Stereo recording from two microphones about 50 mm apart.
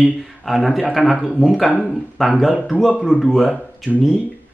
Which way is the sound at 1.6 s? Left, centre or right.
Centre.